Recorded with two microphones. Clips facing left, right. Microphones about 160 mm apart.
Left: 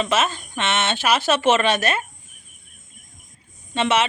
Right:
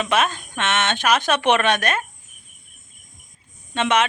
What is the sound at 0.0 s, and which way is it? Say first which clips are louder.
Speech: even; 5° left (ahead or behind).